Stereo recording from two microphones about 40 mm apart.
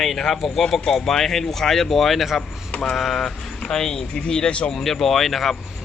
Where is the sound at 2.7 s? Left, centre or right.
Centre.